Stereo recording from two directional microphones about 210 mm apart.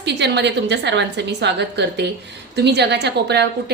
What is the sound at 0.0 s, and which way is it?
A woman's voice, 55° right (ahead or behind).